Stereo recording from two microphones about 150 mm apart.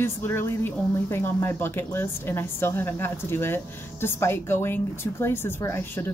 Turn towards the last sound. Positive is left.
turn(degrees=15)  # may be behind; listen again after turning